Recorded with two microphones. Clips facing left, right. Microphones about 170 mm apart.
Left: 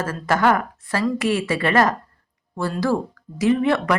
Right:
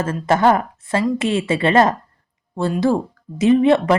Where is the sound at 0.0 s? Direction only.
25° right (ahead or behind).